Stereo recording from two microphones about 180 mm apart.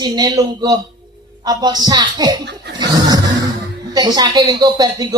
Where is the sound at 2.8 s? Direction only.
20° right (ahead or behind).